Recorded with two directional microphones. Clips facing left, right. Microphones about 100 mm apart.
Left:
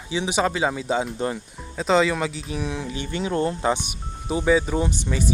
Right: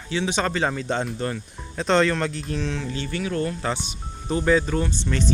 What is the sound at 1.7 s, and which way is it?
Speech, 5° left (ahead or behind).